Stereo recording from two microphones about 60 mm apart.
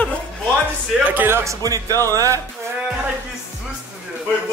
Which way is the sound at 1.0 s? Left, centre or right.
Right.